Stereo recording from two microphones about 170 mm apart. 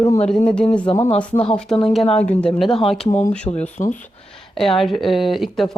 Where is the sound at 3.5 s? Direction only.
25° left (ahead or behind).